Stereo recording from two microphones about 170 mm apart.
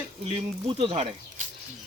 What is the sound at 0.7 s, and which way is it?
Speech, 35° right (ahead or behind).